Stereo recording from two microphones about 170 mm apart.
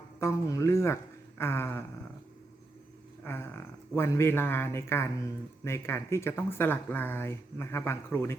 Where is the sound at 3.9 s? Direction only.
15° left (ahead or behind).